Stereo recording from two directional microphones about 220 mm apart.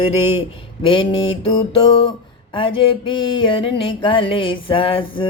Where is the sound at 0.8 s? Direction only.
20° left (ahead or behind).